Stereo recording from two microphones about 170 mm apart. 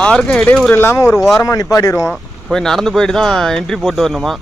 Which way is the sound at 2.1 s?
Centre (ahead or behind).